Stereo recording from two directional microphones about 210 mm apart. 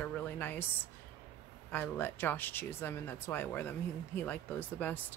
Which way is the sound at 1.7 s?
10° left (ahead or behind).